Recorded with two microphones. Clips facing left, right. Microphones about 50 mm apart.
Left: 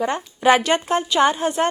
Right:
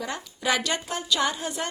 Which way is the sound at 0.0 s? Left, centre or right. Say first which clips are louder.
Left 11 dB; left.